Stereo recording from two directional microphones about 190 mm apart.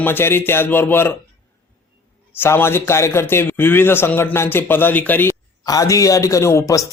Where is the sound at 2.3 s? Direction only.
10° left (ahead or behind).